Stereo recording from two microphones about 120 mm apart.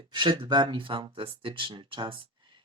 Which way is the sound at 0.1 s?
40° right (ahead or behind).